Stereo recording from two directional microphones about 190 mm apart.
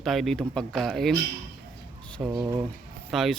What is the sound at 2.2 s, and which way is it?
Speech, 5° right (ahead or behind).